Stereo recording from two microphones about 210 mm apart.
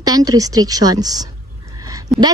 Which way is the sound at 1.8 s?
15° right (ahead or behind).